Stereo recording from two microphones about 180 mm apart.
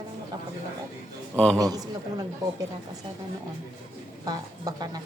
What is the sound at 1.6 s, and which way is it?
A woman's voice, 20° right (ahead or behind).